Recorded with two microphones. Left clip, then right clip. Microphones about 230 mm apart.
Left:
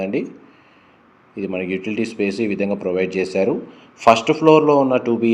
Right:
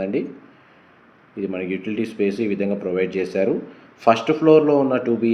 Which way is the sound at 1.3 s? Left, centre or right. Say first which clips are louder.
Left 2 dB; left.